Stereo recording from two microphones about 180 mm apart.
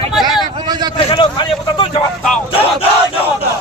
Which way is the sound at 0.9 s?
25° left (ahead or behind).